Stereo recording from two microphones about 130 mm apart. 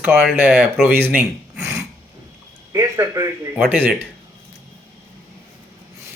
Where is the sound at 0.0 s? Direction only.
5° right (ahead or behind); by 3.2 s 25° right (ahead or behind).